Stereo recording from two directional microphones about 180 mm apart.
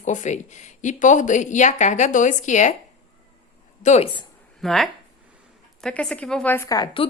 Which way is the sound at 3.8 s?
35° left (ahead or behind).